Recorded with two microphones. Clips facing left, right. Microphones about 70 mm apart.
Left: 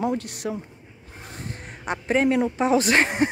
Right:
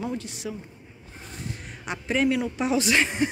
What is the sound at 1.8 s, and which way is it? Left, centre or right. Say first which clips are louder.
Speech: left 3 dB; left.